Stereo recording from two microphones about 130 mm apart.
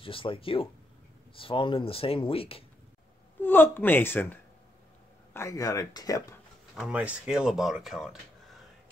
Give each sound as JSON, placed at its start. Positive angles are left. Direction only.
{"t": 0.0, "sound": "speech", "side_deg": 45}
{"t": 3.3, "sound": "a woman's voice", "side_deg": 15}
{"t": 6.9, "sound": "speech", "side_deg": -10}